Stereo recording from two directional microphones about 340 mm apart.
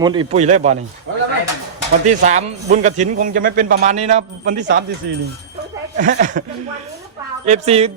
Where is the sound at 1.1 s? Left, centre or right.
Right.